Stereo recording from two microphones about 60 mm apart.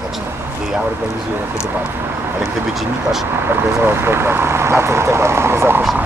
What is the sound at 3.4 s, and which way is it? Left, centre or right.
Speech, right.